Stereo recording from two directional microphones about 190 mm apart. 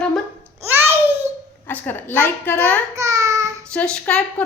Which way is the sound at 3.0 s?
15° right (ahead or behind).